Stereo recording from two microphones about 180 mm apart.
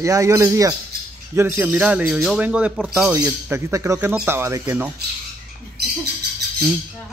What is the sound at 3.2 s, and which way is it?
Speech, 15° right (ahead or behind).